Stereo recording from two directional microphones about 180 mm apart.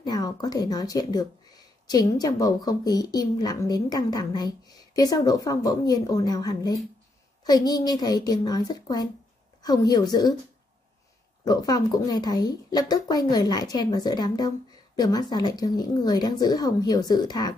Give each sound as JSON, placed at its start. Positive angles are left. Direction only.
{"t": 0.0, "sound": "speech", "side_deg": 20}
{"t": 11.4, "sound": "speech", "side_deg": 20}